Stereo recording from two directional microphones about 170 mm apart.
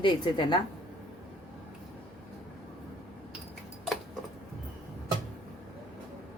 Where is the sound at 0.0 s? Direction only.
25° left (ahead or behind).